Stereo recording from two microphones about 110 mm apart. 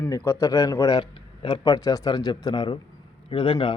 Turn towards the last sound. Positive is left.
turn(degrees=50)  # may be behind; listen again after turning